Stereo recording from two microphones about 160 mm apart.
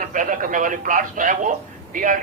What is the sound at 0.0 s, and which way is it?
A man's voice, 55° right (ahead or behind).